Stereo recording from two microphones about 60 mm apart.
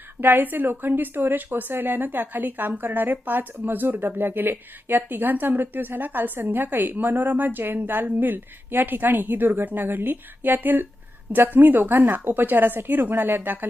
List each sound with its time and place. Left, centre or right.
0.2 s a woman's voice: right